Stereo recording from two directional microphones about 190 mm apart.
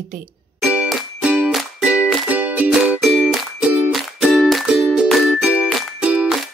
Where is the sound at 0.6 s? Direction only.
5° right (ahead or behind).